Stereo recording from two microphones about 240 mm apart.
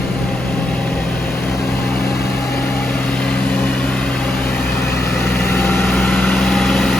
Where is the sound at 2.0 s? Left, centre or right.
Left.